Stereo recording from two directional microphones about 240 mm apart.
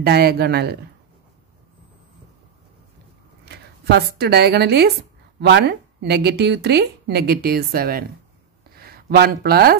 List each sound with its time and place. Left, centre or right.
0.0 s speech: right
3.4 s speech: right